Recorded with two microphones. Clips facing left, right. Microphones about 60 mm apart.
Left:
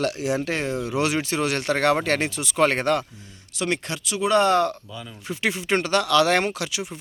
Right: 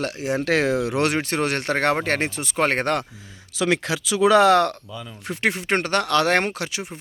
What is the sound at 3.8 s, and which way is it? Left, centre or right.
Speech, right.